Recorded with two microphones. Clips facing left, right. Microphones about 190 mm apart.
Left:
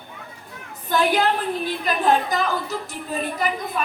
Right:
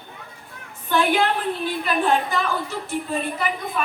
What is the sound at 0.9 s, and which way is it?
A woman's voice, 40° left (ahead or behind).